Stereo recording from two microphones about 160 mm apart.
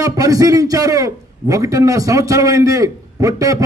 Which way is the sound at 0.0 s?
20° right (ahead or behind).